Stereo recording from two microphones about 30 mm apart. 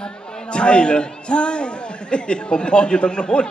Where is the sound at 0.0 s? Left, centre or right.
Left.